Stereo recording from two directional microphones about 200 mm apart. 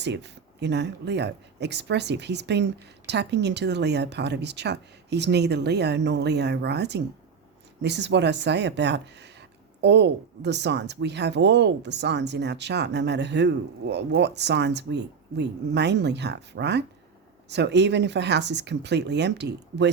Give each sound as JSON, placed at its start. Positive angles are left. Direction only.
{"t": 0.0, "sound": "speech", "side_deg": -60}